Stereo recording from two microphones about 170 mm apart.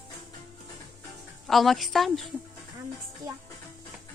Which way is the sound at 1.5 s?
Centre (ahead or behind).